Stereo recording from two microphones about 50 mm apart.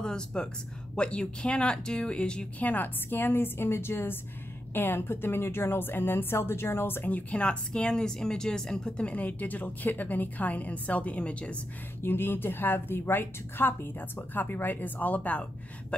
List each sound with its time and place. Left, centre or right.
0.0 s speech: centre
2.6 s a woman's voice: left
7.1 s speech: left; by 8.9 s centre
8.9 s a woman's voice: left
12.0 s a woman's voice: left